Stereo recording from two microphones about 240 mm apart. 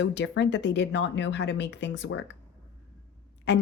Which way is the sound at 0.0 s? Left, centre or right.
Left.